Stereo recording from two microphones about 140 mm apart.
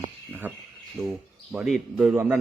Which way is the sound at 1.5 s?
Centre (ahead or behind).